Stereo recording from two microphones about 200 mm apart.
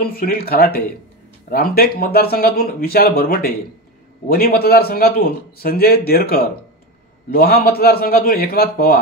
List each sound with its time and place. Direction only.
0.0 s a man's voice: 45° left (ahead or behind)